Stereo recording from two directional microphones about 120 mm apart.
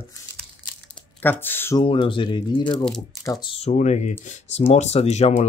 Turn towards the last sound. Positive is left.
turn(degrees=65)  # may be behind; listen again after turning